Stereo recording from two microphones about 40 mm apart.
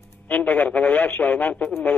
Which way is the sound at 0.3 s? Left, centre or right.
Left.